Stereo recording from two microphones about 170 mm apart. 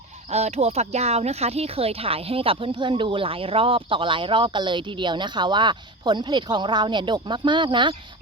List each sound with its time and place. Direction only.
0.3 s speech: 40° right (ahead or behind)